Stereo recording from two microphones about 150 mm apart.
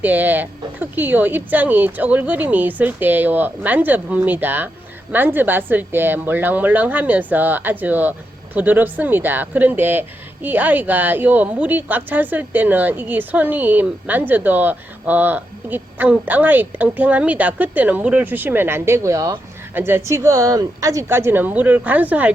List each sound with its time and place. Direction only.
0.0 s speech: 10° right (ahead or behind)